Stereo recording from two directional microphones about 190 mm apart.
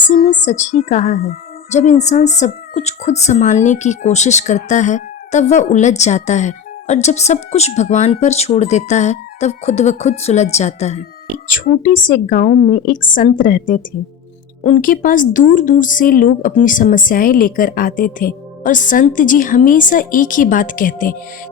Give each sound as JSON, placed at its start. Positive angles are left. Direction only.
{"t": 0.0, "sound": "a woman's voice", "side_deg": 45}
{"t": 11.4, "sound": "speech", "side_deg": 45}